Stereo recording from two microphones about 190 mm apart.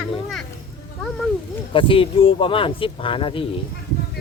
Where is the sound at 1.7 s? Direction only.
25° left (ahead or behind).